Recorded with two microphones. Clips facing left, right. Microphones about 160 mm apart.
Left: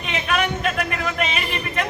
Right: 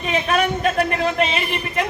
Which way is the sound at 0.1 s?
35° right (ahead or behind).